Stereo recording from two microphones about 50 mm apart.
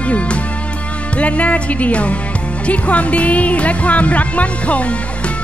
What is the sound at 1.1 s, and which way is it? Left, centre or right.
Speech, left.